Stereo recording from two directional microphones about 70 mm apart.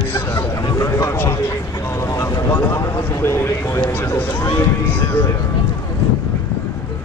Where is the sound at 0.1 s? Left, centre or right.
Left.